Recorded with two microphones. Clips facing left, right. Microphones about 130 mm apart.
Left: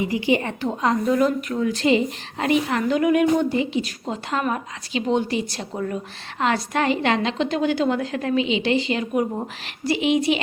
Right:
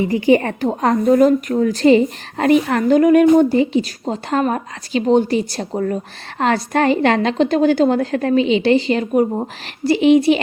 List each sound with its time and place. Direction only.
0.1 s a woman's voice: 50° right (ahead or behind)
9.3 s a woman's voice: 30° right (ahead or behind)